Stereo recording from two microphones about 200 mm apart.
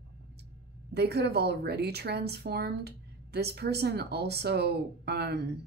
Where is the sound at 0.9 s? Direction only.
55° right (ahead or behind).